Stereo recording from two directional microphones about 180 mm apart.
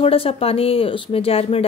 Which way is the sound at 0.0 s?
30° left (ahead or behind).